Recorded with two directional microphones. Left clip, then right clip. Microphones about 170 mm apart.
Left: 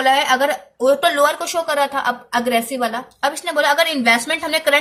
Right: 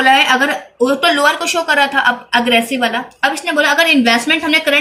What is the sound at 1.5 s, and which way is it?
Speech, 20° left (ahead or behind).